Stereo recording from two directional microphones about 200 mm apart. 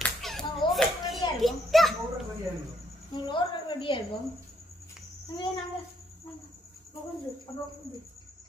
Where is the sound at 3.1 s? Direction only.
25° left (ahead or behind).